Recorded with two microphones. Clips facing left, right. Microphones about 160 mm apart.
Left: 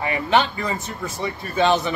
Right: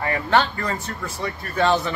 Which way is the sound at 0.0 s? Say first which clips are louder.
Even; 15° left (ahead or behind).